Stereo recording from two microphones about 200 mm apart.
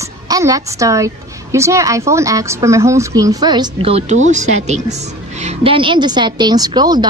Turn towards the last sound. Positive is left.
turn(degrees=-20)  # may be behind; listen again after turning